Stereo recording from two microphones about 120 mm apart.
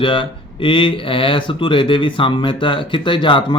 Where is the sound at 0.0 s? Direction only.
45° left (ahead or behind).